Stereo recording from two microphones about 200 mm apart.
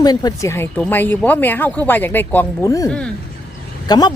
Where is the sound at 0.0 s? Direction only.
20° left (ahead or behind).